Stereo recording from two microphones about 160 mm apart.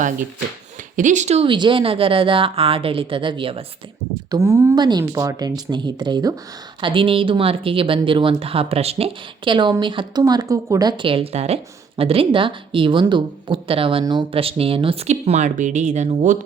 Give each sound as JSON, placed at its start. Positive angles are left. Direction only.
{"t": 0.9, "sound": "speech", "side_deg": -50}
{"t": 4.3, "sound": "speech", "side_deg": -20}